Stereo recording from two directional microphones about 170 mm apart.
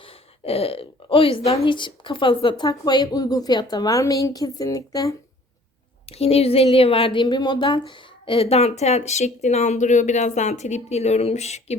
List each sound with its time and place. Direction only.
0.0 s speech: 35° left (ahead or behind)
6.1 s a woman's voice: 35° left (ahead or behind)